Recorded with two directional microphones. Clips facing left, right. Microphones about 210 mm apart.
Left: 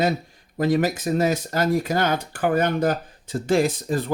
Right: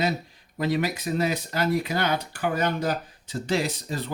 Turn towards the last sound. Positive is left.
turn(degrees=50)  # may be behind; listen again after turning